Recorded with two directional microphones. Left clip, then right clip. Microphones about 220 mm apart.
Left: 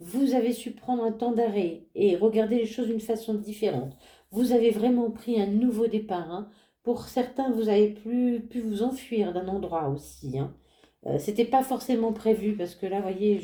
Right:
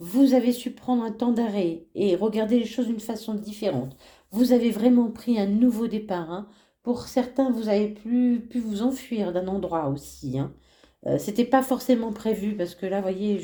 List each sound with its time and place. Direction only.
0.1 s a woman's voice: 45° right (ahead or behind)